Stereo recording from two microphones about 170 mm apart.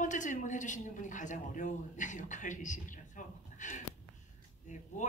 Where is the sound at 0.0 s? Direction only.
45° left (ahead or behind).